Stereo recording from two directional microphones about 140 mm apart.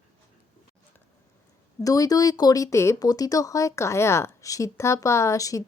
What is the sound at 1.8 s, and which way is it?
A woman's voice, 25° left (ahead or behind).